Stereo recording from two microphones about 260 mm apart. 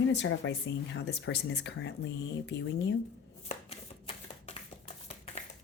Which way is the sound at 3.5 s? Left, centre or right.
Left.